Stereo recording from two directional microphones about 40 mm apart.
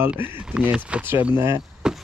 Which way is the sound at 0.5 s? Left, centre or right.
Right.